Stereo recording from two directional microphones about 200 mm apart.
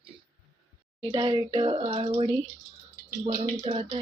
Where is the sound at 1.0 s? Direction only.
20° right (ahead or behind).